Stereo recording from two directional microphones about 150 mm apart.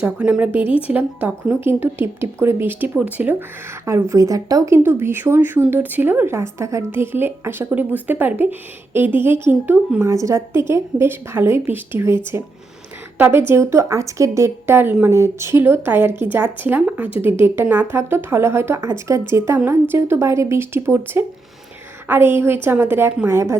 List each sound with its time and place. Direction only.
0.0 s a woman's voice: 10° right (ahead or behind)